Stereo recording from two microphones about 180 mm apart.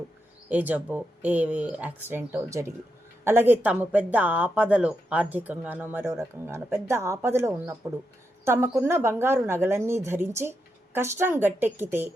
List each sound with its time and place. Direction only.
0.5 s speech: 10° right (ahead or behind)